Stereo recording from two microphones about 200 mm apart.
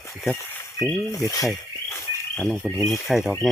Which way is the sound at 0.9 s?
15° left (ahead or behind).